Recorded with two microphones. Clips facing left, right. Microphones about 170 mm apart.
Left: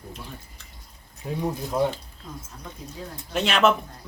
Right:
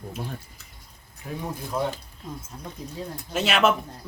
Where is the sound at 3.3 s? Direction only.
5° right (ahead or behind).